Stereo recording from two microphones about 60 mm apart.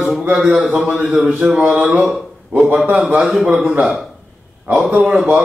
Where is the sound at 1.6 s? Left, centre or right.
Right.